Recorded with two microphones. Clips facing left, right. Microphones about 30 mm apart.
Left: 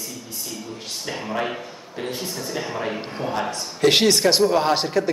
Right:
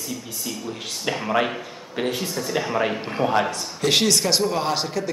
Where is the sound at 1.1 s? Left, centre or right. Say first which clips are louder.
Right 5 dB; right.